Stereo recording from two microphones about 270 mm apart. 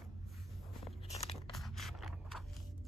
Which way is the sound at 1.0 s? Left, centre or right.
Left.